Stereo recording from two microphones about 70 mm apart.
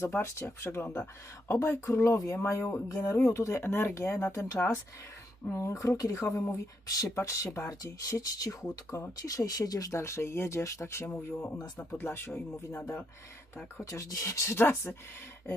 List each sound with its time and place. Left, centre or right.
0.0 s speech: left
2.3 s speech: left
2.9 s speech: left
6.8 s speech: left
7.2 s speech: left
10.0 s speech: left
13.8 s speech: left